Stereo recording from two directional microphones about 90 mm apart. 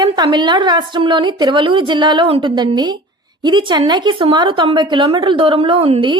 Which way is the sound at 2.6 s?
55° right (ahead or behind).